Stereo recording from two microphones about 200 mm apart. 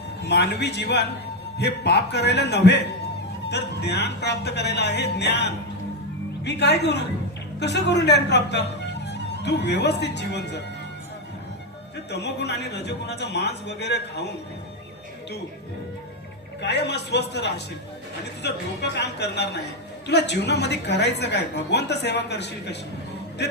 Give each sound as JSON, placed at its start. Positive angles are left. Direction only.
{"t": 0.3, "sound": "a woman's voice", "side_deg": 55}
{"t": 12.2, "sound": "a woman's voice", "side_deg": 60}
{"t": 16.6, "sound": "a woman's voice", "side_deg": 60}